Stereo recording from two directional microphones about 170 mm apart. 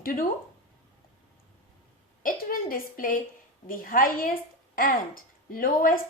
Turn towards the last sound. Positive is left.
turn(degrees=55)  # may be behind; listen again after turning